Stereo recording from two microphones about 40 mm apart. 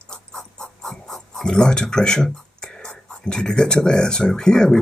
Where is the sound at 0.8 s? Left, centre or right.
Centre.